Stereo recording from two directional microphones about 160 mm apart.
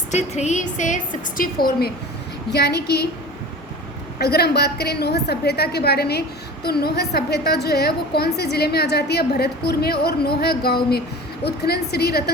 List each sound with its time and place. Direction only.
0.1 s a woman's voice: 45° left (ahead or behind); by 1.9 s 70° left (ahead or behind)
2.5 s a woman's voice: 90° left
4.2 s a woman's voice: 90° left
11.4 s a woman's voice: 90° left